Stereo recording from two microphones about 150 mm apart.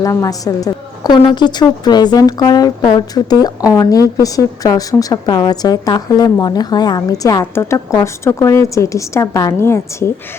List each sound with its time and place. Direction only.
0.0 s a woman's voice: 20° left (ahead or behind)